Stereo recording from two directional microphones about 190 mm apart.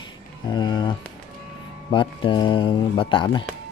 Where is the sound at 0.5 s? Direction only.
25° left (ahead or behind).